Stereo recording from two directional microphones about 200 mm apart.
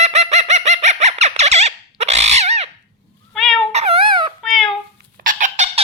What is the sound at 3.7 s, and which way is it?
Dog, 30° right (ahead or behind).